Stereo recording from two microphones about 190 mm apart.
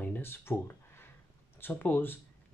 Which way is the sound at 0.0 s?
10° left (ahead or behind).